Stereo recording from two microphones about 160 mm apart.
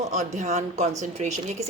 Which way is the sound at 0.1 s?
45° right (ahead or behind).